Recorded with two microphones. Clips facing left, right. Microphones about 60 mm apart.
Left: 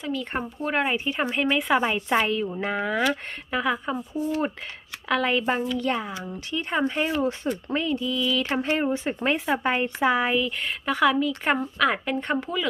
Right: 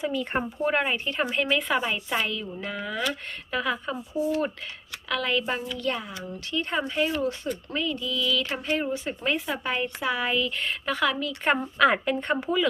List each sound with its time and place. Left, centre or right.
0.0 s speech: centre
2.0 s speech: left
3.0 s speech: centre
3.9 s speech: centre
5.0 s speech: left
10.4 s speech: centre
11.3 s speech: centre